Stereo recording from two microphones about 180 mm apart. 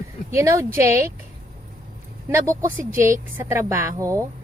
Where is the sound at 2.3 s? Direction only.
15° right (ahead or behind).